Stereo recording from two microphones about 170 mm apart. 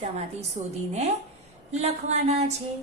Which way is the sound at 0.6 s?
50° right (ahead or behind).